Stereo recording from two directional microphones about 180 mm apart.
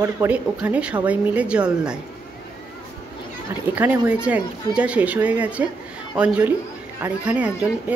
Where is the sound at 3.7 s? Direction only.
10° right (ahead or behind).